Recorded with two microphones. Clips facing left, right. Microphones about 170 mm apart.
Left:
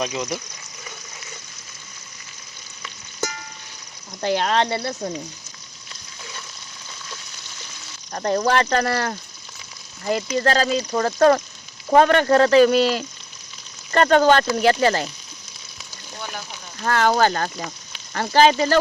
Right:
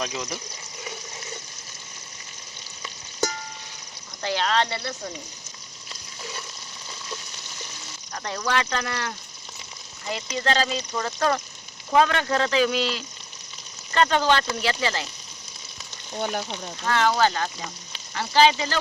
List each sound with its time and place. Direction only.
4.2 s speech: 45° left (ahead or behind)
8.1 s speech: 45° left (ahead or behind)
16.2 s speech: 40° right (ahead or behind)
16.8 s speech: 50° left (ahead or behind)